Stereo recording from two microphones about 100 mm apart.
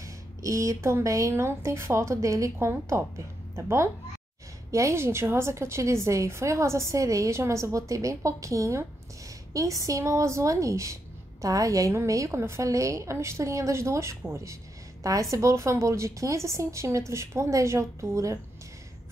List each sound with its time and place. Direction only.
0.0 s a woman's voice: 30° right (ahead or behind)